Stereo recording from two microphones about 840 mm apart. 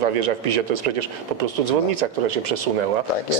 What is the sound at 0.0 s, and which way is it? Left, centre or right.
A man's voice, right.